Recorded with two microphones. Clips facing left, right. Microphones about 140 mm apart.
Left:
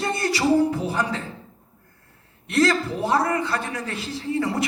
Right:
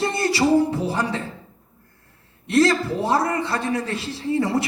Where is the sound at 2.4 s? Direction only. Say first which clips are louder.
Right 3 dB; 30° right (ahead or behind).